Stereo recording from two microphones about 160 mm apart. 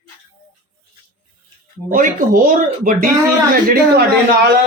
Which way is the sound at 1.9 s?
60° right (ahead or behind).